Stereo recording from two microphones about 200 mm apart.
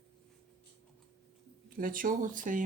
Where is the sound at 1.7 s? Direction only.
45° right (ahead or behind).